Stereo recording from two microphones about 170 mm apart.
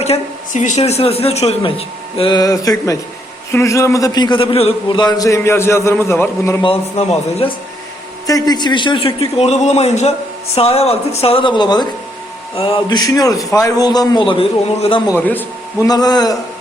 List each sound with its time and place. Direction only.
0.0 s a man's voice: 45° left (ahead or behind)
2.1 s a man's voice: 30° left (ahead or behind)
6.6 s a man's voice: 35° left (ahead or behind)
8.3 s a man's voice: 20° left (ahead or behind)
15.1 s speech: 10° left (ahead or behind)
15.9 s a man's voice: 25° left (ahead or behind)